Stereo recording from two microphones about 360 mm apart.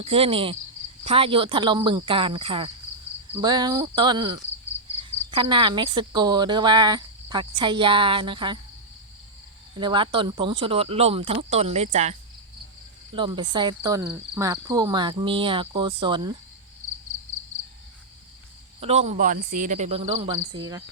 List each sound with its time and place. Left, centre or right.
0.0 s speech: centre
4.7 s cricket: centre
5.3 s speech: centre
9.7 s speech: centre
13.1 s speech: centre
18.8 s speech: centre